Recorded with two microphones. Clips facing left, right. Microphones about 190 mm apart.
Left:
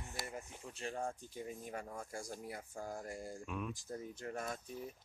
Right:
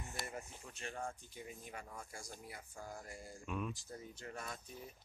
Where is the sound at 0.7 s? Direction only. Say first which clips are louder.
Left 4 dB; 30° left (ahead or behind); by 3.3 s 50° left (ahead or behind).